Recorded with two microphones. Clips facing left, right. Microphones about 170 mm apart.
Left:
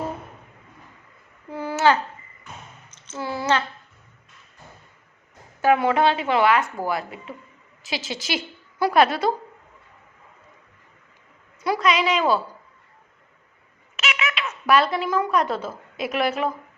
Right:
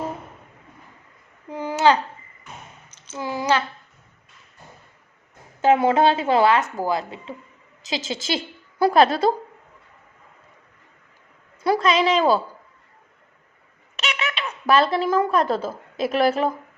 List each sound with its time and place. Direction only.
1.5 s a sound: 20° right (ahead or behind)
5.6 s a woman's voice: 25° right (ahead or behind)
11.6 s a woman's voice: 30° right (ahead or behind)
13.9 s a child's voice: 35° right (ahead or behind)